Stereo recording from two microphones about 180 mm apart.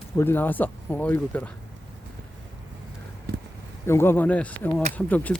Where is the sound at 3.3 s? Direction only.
65° right (ahead or behind).